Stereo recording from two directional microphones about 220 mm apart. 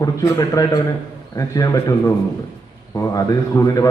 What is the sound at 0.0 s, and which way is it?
A man's voice, 15° left (ahead or behind).